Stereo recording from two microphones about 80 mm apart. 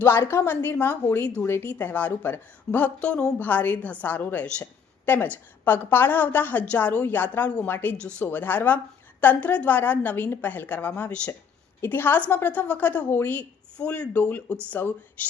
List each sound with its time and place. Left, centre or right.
0.0 s a woman's voice: left; by 4.7 s centre
5.0 s a woman's voice: left
13.7 s a woman's voice: centre